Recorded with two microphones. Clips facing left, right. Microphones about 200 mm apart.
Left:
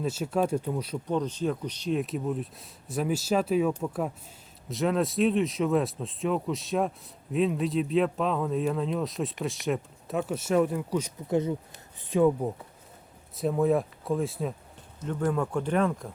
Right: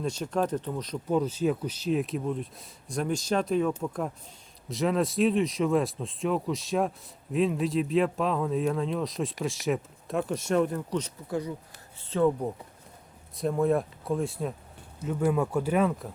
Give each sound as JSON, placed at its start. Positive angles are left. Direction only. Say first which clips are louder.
{"t": 0.0, "sound": "speech", "louder": "left 1 dB", "side_deg": 5}
{"t": 1.0, "sound": "speech", "louder": "right 3 dB", "side_deg": -5}
{"t": 11.3, "sound": "speech", "louder": "left 6 dB", "side_deg": 20}
{"t": 12.0, "sound": "speech", "louder": "left 2 dB", "side_deg": 10}